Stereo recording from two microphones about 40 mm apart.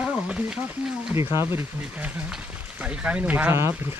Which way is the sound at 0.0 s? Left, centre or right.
Right.